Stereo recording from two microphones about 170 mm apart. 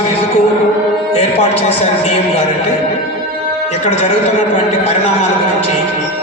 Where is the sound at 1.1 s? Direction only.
40° left (ahead or behind).